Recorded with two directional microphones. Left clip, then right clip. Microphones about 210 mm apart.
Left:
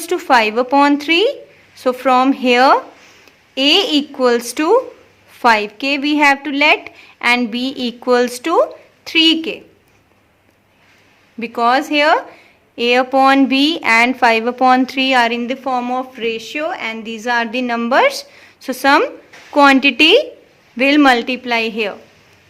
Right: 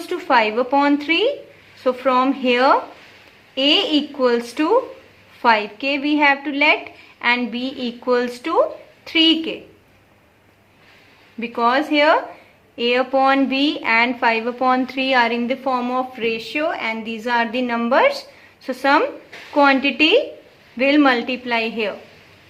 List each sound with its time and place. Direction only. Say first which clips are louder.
0.0 s speech: left 4 dB; 50° left (ahead or behind)
11.3 s speech: left 4 dB; 45° left (ahead or behind)